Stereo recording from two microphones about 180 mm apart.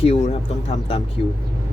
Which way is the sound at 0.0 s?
35° left (ahead or behind).